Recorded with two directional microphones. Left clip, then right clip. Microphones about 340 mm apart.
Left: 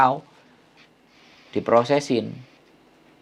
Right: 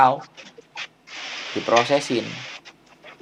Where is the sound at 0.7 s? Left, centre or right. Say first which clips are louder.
Right 18 dB; right.